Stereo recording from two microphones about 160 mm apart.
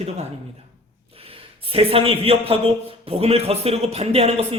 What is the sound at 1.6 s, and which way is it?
A man's voice, 35° right (ahead or behind).